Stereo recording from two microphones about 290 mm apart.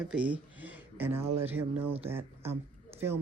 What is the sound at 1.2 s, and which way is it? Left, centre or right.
Speech, right.